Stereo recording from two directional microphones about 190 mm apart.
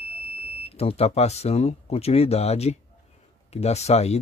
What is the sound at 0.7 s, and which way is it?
Speech, 30° left (ahead or behind).